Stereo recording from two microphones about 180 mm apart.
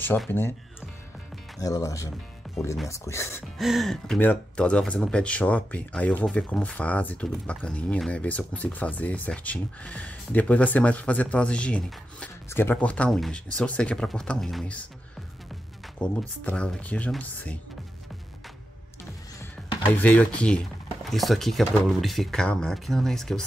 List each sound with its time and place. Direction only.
0.3 s speech: 15° left (ahead or behind)
1.6 s speech: 20° left (ahead or behind)
2.4 s music: centre (ahead or behind)
2.9 s speech: 15° left (ahead or behind)
3.5 s speech: centre (ahead or behind)
16.0 s speech: 5° left (ahead or behind)
20.0 s speech: 10° left (ahead or behind)